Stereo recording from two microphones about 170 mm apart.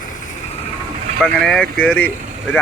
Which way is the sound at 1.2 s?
5° left (ahead or behind).